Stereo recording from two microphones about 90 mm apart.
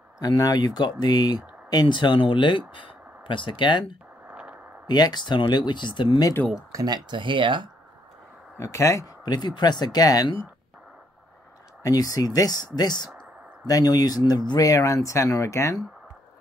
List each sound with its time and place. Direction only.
0.2 s speech: 50° left (ahead or behind)
4.3 s a sound: 15° right (ahead or behind)
4.8 s speech: 50° left (ahead or behind)
6.7 s speech: 50° right (ahead or behind); by 7.7 s 65° right (ahead or behind)
8.5 s speech: 35° left (ahead or behind)
9.2 s speech: 50° left (ahead or behind)
11.8 s speech: 45° left (ahead or behind)